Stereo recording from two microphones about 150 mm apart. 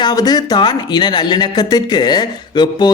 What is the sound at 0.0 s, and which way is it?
Speech, 25° left (ahead or behind).